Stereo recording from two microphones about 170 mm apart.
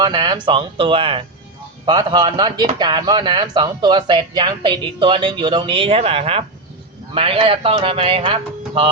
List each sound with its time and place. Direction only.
0.0 s speech: 25° right (ahead or behind)